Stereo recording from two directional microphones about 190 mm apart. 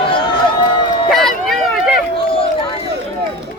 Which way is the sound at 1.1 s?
Centre (ahead or behind).